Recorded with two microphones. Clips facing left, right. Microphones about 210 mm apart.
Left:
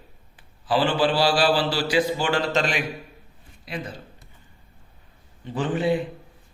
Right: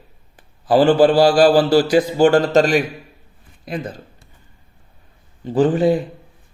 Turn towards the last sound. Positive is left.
turn(degrees=-40)  # may be behind; listen again after turning